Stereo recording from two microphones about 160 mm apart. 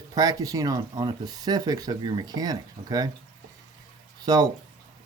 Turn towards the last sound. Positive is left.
turn(degrees=-25)  # may be behind; listen again after turning